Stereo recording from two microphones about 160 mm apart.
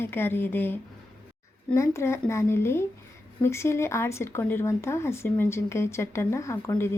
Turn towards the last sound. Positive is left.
turn(degrees=15)  # may be behind; listen again after turning